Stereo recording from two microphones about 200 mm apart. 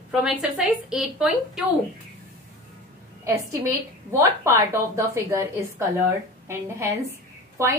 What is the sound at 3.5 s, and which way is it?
A woman's voice, 15° right (ahead or behind).